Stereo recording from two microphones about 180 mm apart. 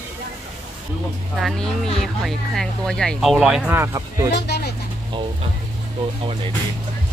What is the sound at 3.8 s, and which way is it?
Speech, 15° right (ahead or behind).